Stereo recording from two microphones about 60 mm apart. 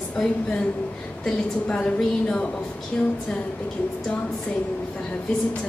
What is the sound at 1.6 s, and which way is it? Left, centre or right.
Speech, centre.